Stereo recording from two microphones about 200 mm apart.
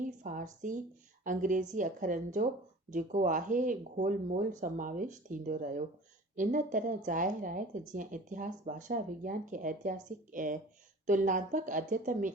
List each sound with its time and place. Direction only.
0.0 s speech: 40° right (ahead or behind)